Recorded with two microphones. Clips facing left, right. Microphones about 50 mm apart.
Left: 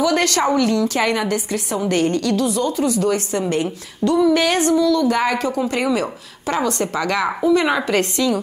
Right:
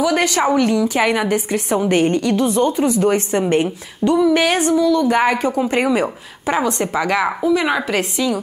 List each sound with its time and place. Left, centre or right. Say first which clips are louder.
0.0 s a woman's voice: right 1 dB; centre
4.3 s a woman's voice: right 1 dB; centre